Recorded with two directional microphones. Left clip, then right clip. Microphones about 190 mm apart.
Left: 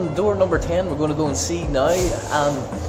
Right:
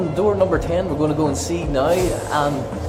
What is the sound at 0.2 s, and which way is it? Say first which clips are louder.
Speech: right 1 dB; 10° left (ahead or behind).